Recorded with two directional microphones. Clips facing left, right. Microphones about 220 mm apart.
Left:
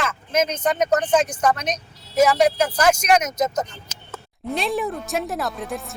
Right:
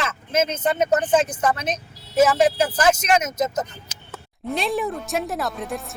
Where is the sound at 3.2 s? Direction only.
25° right (ahead or behind).